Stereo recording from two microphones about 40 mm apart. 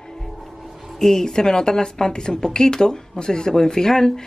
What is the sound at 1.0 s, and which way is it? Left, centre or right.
Speech, centre.